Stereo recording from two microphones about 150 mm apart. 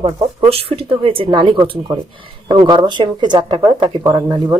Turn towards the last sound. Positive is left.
turn(degrees=-25)  # may be behind; listen again after turning